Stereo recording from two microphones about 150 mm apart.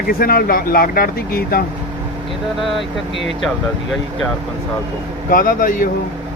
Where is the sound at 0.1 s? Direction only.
80° left.